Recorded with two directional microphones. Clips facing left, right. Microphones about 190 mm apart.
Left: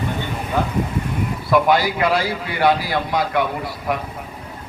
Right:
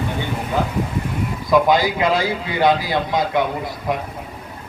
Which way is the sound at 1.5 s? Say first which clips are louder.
Right 1 dB; 20° right (ahead or behind).